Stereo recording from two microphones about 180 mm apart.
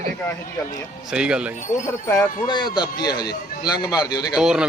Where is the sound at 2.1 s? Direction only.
25° left (ahead or behind).